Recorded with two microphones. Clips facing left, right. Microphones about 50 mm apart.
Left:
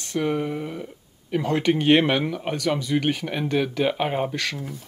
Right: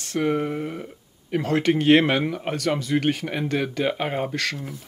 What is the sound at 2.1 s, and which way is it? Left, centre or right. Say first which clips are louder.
Speech: even; centre.